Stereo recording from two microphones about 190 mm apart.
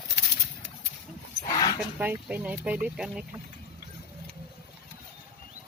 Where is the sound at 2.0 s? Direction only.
10° right (ahead or behind).